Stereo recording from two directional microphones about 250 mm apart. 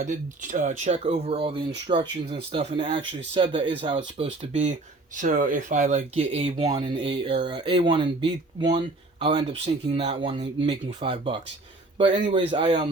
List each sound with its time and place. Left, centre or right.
0.0 s speech: right